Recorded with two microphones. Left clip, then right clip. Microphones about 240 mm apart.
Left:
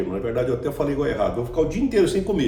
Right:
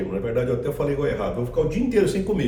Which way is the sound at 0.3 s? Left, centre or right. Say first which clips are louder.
Even; centre.